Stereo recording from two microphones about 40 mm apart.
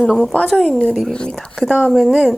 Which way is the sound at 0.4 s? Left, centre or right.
Centre.